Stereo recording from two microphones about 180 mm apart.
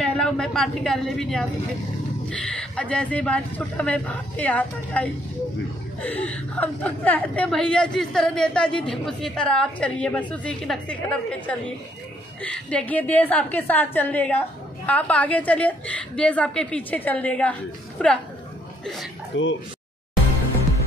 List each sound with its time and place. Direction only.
0.0 s a woman's voice: 5° left (ahead or behind)
19.3 s speech: 90° left